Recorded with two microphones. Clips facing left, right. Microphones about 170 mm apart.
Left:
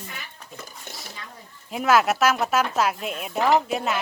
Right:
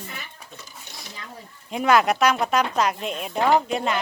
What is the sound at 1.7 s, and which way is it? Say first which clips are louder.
Speech: right 1 dB; 5° left (ahead or behind).